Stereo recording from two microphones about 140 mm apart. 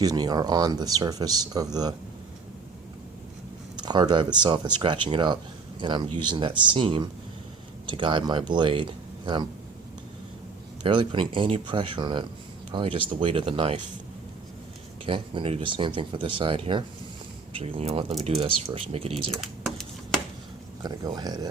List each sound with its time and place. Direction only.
0.0 s speech: 30° right (ahead or behind)
3.8 s speech: 30° right (ahead or behind)
10.8 s speech: 35° right (ahead or behind)
15.0 s speech: 40° right (ahead or behind)
19.3 s a sound: centre (ahead or behind)
20.8 s speech: 30° right (ahead or behind)